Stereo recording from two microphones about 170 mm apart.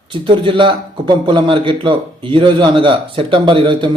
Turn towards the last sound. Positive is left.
turn(degrees=-30)  # may be behind; listen again after turning